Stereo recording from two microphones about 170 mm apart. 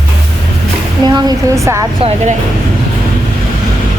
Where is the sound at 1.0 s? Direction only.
20° right (ahead or behind).